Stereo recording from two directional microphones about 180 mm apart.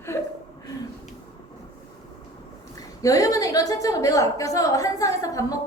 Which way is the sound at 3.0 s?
20° left (ahead or behind).